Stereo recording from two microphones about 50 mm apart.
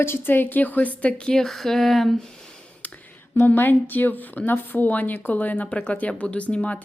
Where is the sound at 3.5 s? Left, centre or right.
Left.